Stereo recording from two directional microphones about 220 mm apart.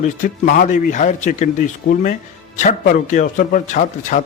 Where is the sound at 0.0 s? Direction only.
35° left (ahead or behind).